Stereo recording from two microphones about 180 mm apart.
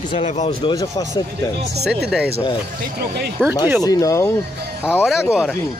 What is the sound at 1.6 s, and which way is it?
Speech, 65° right (ahead or behind).